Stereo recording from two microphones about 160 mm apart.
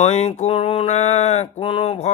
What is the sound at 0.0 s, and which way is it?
Mantra, 45° left (ahead or behind).